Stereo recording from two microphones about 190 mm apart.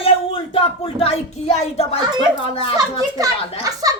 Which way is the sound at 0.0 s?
30° left (ahead or behind).